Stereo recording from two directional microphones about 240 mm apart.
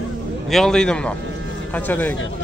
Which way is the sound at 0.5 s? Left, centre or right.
Centre.